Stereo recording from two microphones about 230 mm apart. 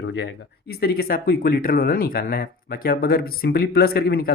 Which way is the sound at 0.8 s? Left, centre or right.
Left.